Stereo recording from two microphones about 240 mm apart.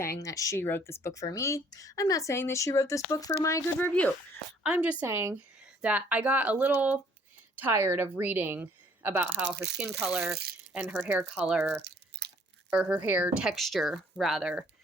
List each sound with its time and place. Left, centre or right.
0.0 s speech: centre
4.6 s a woman's voice: centre
12.2 s crunch: right
12.7 s a woman's voice: centre